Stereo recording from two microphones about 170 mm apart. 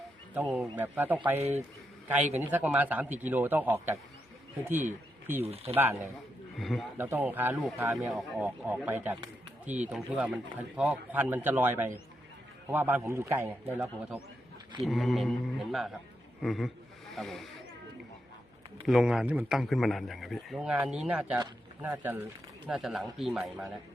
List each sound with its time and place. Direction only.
0.3 s speech: 10° right (ahead or behind)
5.4 s speech: 35° right (ahead or behind)
5.7 s speech: 10° right (ahead or behind)
6.6 s speech: centre (ahead or behind)
6.9 s speech: 15° right (ahead or behind)
14.8 s speech: centre (ahead or behind)
18.9 s speech: centre (ahead or behind)